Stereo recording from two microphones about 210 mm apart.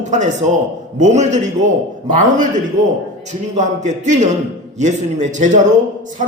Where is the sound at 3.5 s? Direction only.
35° right (ahead or behind).